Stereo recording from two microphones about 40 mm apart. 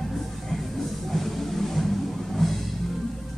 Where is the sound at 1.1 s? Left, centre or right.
Centre.